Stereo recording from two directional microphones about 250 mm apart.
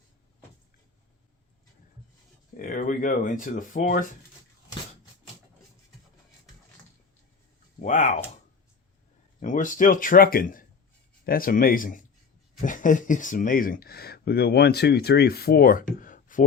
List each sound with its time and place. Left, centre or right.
2.6 s speech: left
7.8 s speech: left
9.4 s speech: left